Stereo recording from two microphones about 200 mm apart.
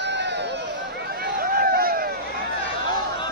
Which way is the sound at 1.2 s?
45° right (ahead or behind).